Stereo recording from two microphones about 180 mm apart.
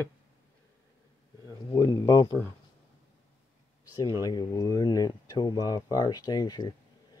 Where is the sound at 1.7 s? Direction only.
20° left (ahead or behind).